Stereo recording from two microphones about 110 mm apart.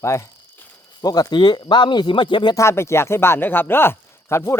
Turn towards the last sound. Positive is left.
turn(degrees=25)  # may be behind; listen again after turning